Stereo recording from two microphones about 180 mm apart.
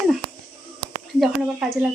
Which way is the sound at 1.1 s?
Centre (ahead or behind).